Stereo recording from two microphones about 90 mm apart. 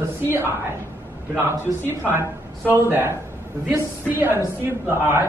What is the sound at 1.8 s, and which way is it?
A man's voice, 25° right (ahead or behind).